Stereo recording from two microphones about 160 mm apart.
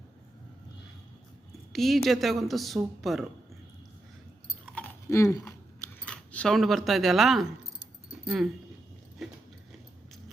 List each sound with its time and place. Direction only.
1.7 s a woman's voice: centre (ahead or behind)
4.6 s chewing: 10° left (ahead or behind)
6.1 s speech: 5° left (ahead or behind)